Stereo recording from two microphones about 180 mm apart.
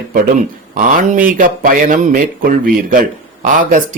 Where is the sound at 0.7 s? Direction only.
50° right (ahead or behind).